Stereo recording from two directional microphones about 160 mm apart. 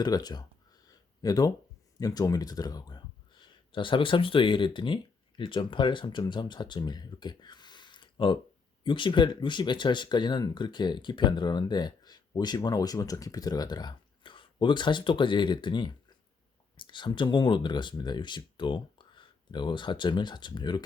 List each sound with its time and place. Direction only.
0.0 s speech: 25° left (ahead or behind)
0.9 s a sound: 25° left (ahead or behind)
2.0 s speech: 25° left (ahead or behind)